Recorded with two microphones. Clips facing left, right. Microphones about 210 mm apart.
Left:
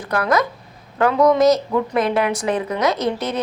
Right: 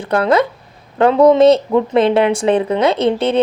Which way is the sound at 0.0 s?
25° right (ahead or behind).